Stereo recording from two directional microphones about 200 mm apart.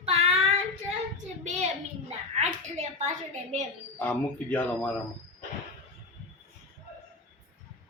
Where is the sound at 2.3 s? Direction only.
35° right (ahead or behind).